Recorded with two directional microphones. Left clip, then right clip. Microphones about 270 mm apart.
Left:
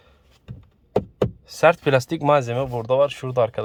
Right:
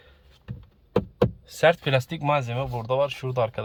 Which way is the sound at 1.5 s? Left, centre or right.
Centre.